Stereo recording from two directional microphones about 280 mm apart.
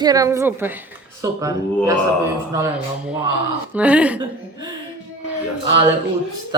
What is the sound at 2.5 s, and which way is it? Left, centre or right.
Speech, centre.